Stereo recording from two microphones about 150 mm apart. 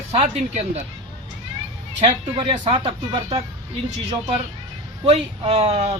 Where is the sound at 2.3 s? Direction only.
40° right (ahead or behind).